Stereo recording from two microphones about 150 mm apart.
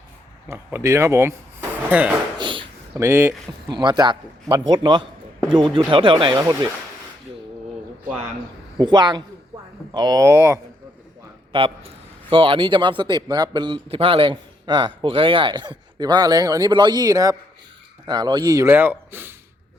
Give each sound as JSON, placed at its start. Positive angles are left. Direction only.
{"t": 0.4, "sound": "speech", "side_deg": -15}
{"t": 2.4, "sound": "speech", "side_deg": -35}
{"t": 2.9, "sound": "speech", "side_deg": -15}
{"t": 3.7, "sound": "a man's voice", "side_deg": -30}
{"t": 6.4, "sound": "a man's voice", "side_deg": -20}
{"t": 8.8, "sound": "a man's voice", "side_deg": -30}
{"t": 11.5, "sound": "a man's voice", "side_deg": -35}